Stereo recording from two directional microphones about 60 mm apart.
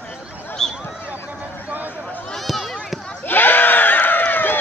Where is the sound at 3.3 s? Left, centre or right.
Left.